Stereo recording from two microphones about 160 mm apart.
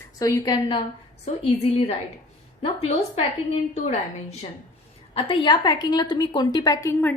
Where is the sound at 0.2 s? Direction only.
25° left (ahead or behind).